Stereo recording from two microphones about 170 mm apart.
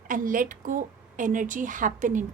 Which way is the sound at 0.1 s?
50° right (ahead or behind).